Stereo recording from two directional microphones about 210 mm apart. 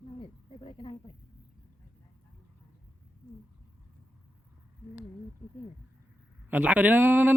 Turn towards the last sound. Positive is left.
turn(degrees=-10)  # may be behind; listen again after turning